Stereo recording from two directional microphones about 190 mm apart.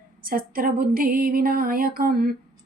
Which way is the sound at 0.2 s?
50° right (ahead or behind).